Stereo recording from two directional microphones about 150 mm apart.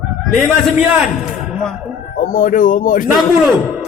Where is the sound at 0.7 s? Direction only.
5° right (ahead or behind).